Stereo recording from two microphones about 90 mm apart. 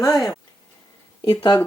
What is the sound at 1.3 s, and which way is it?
Speech, 45° left (ahead or behind).